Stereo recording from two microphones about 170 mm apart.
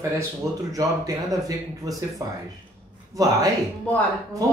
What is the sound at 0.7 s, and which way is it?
Speech, 20° right (ahead or behind).